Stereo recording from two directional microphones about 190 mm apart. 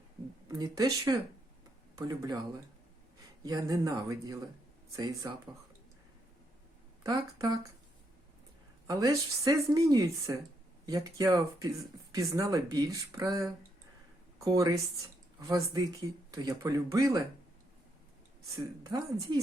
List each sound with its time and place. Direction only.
0.4 s speech: 20° right (ahead or behind)
3.4 s speech: 20° right (ahead or behind)
7.0 s speech: 20° right (ahead or behind)
8.9 s speech: 20° right (ahead or behind)
18.5 s speech: 20° right (ahead or behind)